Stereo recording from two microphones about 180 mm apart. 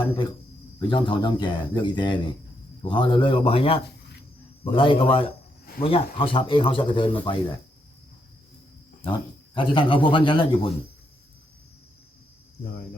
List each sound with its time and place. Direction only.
0.8 s a man's voice: 25° left (ahead or behind)
9.6 s speech: 25° left (ahead or behind)